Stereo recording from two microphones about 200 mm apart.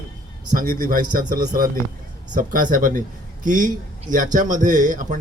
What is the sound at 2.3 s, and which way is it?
A man's voice, 45° right (ahead or behind).